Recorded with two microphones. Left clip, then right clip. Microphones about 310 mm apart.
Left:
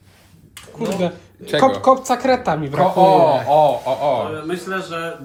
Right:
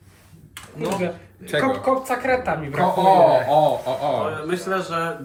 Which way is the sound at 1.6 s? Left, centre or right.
Left.